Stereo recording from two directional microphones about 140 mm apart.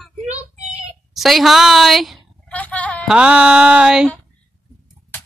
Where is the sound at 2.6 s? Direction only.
10° left (ahead or behind).